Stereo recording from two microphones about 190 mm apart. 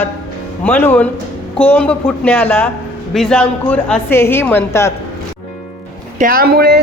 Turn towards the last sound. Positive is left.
turn(degrees=-55)  # may be behind; listen again after turning